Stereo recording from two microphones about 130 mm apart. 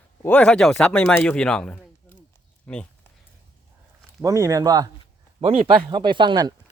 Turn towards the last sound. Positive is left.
turn(degrees=-35)  # may be behind; listen again after turning